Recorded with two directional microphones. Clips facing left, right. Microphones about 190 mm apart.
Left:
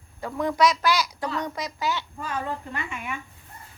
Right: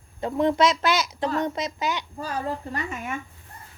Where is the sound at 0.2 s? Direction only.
25° right (ahead or behind).